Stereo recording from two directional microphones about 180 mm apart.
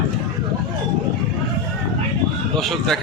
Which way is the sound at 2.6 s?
Centre (ahead or behind).